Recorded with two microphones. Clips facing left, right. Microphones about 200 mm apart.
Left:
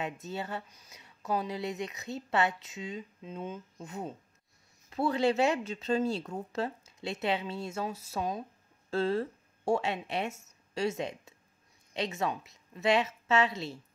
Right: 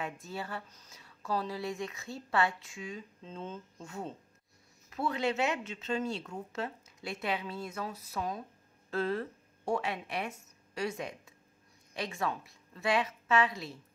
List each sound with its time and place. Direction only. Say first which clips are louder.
0.0 s speech: left 3 dB; 20° left (ahead or behind)
4.8 s a woman's voice: left 5 dB; 30° left (ahead or behind)